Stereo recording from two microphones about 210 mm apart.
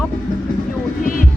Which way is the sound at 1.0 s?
40° left (ahead or behind).